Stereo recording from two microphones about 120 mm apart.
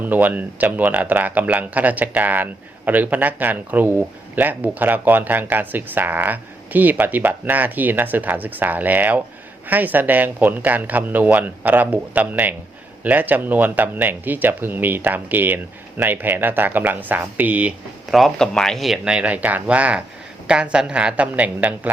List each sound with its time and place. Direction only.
0.0 s speech: 15° right (ahead or behind)
18.1 s speech: centre (ahead or behind)